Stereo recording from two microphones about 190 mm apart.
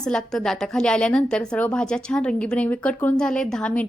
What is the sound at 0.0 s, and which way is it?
A woman's voice, 5° left (ahead or behind).